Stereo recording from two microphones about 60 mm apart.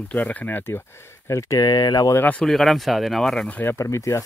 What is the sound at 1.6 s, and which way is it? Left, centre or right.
Speech, left.